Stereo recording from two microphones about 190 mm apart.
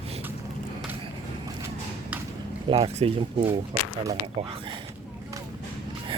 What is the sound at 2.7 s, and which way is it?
Speech, 30° right (ahead or behind).